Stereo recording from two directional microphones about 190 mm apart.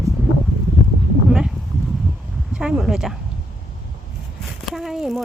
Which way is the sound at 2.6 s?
5° right (ahead or behind).